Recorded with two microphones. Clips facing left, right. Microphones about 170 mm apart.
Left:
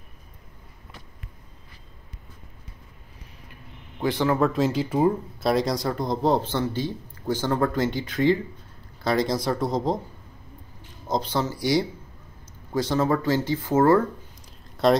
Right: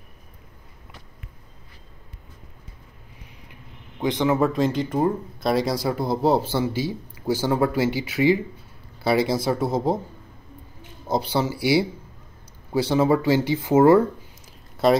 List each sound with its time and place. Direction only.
4.0 s speech: 20° right (ahead or behind)
4.4 s speech: centre (ahead or behind)
11.1 s speech: 10° right (ahead or behind)